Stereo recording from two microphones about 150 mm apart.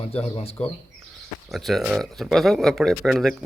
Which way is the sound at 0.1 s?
40° left (ahead or behind).